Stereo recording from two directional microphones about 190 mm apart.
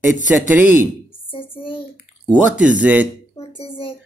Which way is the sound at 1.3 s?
30° left (ahead or behind).